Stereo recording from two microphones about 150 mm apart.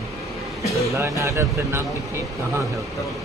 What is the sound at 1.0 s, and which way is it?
Speech, 20° right (ahead or behind).